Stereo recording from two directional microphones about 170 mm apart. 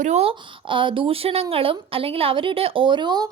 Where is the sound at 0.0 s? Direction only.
40° right (ahead or behind).